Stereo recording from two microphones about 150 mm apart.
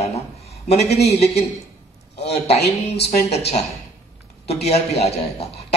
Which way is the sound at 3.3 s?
45° left (ahead or behind).